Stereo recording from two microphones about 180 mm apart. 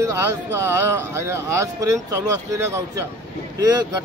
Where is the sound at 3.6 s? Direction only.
20° right (ahead or behind).